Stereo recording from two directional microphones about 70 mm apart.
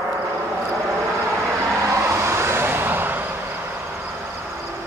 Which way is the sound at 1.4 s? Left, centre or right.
Right.